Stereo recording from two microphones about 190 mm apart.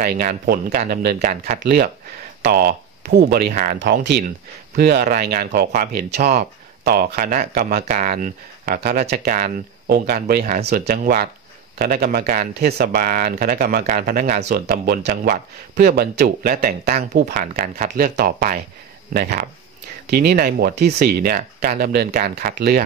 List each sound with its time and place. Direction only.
0.0 s speech: 50° right (ahead or behind)
14.5 s speech: 55° right (ahead or behind)